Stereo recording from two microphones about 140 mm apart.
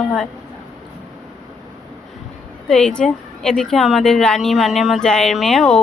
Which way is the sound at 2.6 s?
5° left (ahead or behind).